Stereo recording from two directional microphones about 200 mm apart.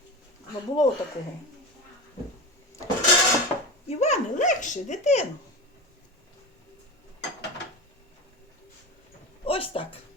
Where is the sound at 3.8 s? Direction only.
35° left (ahead or behind).